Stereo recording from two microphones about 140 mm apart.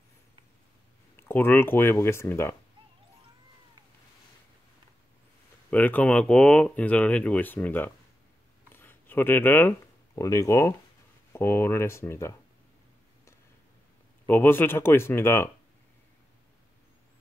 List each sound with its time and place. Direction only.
1.2 s speech: 15° left (ahead or behind)
5.7 s speech: 10° left (ahead or behind)
8.6 s a sound: 15° left (ahead or behind)
11.3 s speech: 15° left (ahead or behind)
14.2 s speech: 15° left (ahead or behind)